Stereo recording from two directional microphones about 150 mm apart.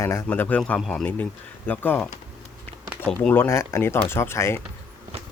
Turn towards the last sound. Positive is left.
turn(degrees=15)  # may be behind; listen again after turning